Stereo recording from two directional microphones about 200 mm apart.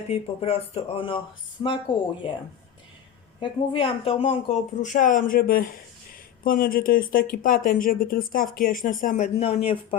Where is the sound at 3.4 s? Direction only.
25° left (ahead or behind).